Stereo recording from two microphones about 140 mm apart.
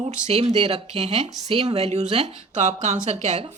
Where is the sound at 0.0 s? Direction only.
55° right (ahead or behind).